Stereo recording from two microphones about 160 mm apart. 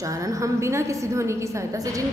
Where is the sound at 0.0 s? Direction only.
20° right (ahead or behind).